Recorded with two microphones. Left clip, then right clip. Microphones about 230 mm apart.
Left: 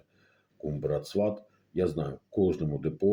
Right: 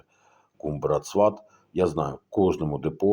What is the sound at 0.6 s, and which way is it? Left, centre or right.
Speech, right.